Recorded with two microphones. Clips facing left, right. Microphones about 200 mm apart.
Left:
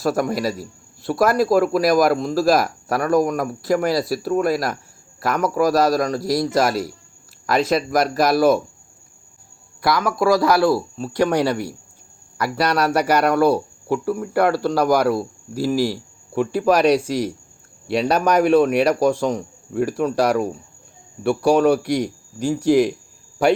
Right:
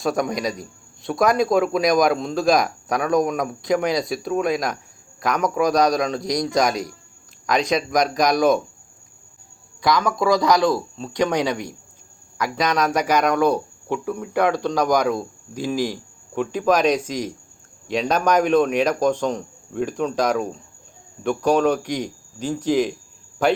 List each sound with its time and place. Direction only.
0.0 s a man's voice: 5° left (ahead or behind)
9.8 s speech: 5° left (ahead or behind)
12.4 s speech: 10° left (ahead or behind)